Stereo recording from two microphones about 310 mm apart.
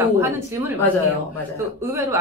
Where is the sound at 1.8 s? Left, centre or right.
Centre.